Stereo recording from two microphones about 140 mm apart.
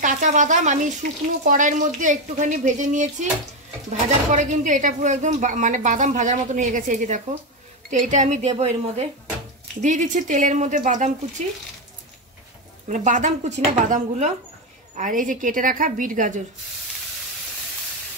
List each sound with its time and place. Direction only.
0.0 s a woman's voice: 65° right (ahead or behind)
9.8 s speech: 60° right (ahead or behind)
12.8 s speech: 60° right (ahead or behind)
15.0 s a woman's voice: 70° right (ahead or behind)